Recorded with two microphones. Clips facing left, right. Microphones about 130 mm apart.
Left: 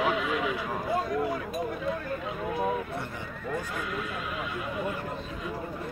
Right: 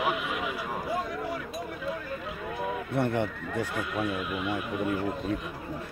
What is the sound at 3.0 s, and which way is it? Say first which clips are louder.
Speech: right 9 dB; 65° right (ahead or behind).